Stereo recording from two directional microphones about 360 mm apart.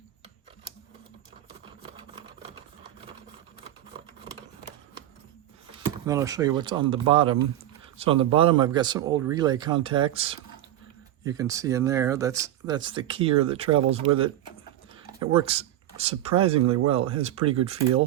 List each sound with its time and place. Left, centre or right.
6.1 s speech: centre